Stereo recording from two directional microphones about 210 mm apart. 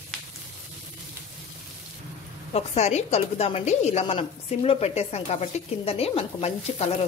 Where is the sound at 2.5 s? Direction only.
30° left (ahead or behind).